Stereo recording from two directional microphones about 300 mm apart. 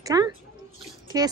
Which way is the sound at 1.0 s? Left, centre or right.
Centre.